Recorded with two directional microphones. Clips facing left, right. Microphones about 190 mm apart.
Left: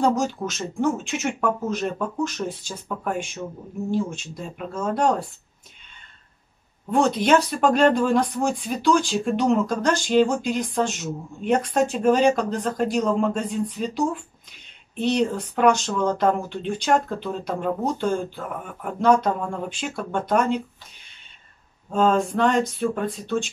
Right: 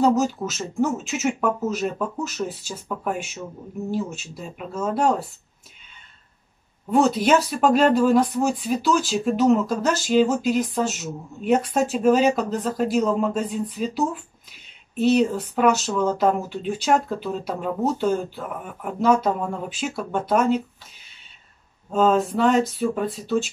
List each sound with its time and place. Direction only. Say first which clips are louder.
0.0 s speech: right 2 dB; 5° right (ahead or behind)
6.9 s speech: right 1 dB; 5° right (ahead or behind)
21.9 s speech: right 1 dB; 5° right (ahead or behind)